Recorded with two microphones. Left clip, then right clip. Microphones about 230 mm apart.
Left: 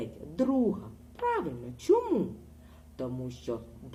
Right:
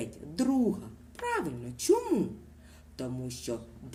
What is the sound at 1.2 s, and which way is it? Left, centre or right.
Speech, right.